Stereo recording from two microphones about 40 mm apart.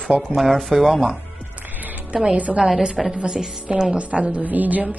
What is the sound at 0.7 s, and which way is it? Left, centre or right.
Speech, centre.